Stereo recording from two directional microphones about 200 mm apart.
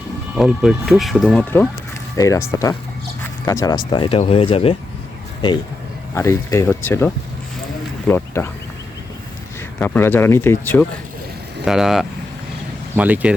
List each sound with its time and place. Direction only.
0.3 s speech: centre (ahead or behind); by 4.8 s 25° left (ahead or behind)
6.1 s speech: 15° left (ahead or behind)
9.8 s speech: 10° left (ahead or behind)
11.6 s speech: centre (ahead or behind)